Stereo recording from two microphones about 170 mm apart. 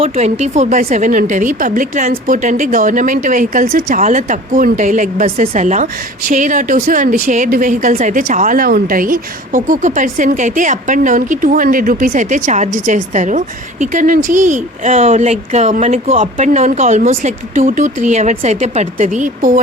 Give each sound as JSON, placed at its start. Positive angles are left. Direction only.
{"t": 0.0, "sound": "speech", "side_deg": -40}